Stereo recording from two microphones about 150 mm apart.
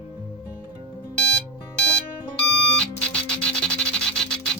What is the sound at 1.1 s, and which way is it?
Music, 5° left (ahead or behind).